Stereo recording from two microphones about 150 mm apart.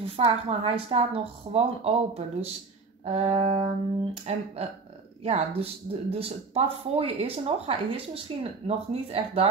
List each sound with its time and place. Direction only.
0.0 s speech: 40° right (ahead or behind)